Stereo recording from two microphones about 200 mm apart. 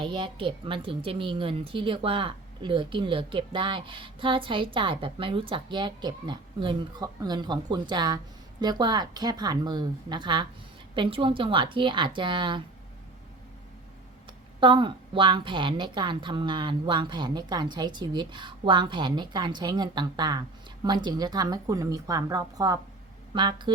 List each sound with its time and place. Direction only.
0.0 s a woman's voice: 25° right (ahead or behind)
14.6 s a woman's voice: 25° right (ahead or behind)